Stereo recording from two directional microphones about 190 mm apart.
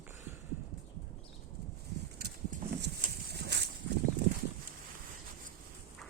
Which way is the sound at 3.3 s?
60° right (ahead or behind).